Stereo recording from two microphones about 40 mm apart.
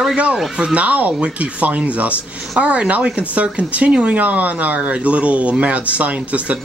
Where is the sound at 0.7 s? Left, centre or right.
Right.